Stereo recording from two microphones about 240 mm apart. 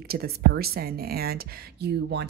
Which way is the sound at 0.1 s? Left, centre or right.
Right.